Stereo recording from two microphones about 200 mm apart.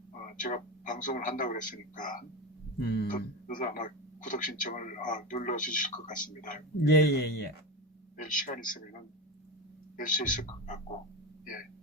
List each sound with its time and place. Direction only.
0.1 s a man's voice: 40° left (ahead or behind)
2.8 s a man's voice: 55° left (ahead or behind)
8.2 s a man's voice: 40° left (ahead or behind)
10.0 s a man's voice: 40° left (ahead or behind)